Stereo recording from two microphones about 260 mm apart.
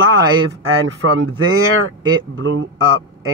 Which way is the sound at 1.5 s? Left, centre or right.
Right.